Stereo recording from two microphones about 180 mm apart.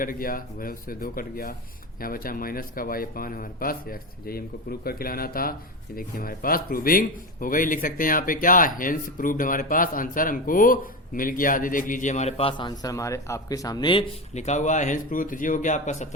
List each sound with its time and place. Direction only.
0.0 s speech: 50° left (ahead or behind); by 14.0 s 25° left (ahead or behind)
14.3 s speech: 40° left (ahead or behind)